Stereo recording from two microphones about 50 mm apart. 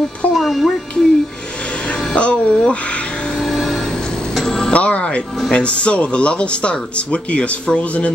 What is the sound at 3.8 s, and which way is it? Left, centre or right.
Music, centre.